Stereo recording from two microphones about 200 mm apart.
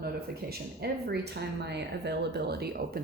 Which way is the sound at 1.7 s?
55° right (ahead or behind).